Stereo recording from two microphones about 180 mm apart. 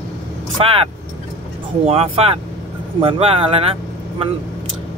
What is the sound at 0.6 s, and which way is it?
Speech, 30° right (ahead or behind).